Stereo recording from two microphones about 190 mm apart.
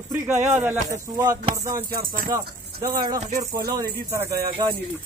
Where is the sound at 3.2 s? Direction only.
40° right (ahead or behind).